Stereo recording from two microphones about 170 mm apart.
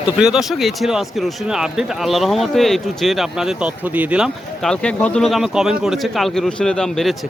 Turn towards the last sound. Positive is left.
turn(degrees=5)  # may be behind; listen again after turning